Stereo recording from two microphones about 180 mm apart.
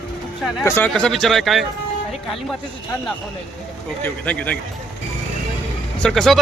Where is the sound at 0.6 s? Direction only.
10° left (ahead or behind).